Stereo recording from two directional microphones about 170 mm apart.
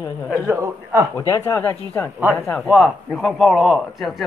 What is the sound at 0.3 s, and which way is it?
A man's voice, 15° right (ahead or behind).